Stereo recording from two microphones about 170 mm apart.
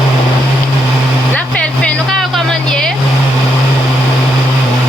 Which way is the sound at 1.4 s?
5° left (ahead or behind).